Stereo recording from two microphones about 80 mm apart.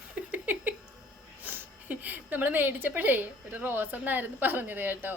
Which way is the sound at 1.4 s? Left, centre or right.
Right.